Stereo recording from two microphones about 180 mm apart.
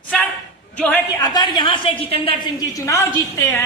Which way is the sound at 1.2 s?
20° left (ahead or behind).